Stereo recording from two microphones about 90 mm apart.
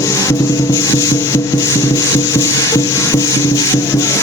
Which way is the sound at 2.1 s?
35° left (ahead or behind).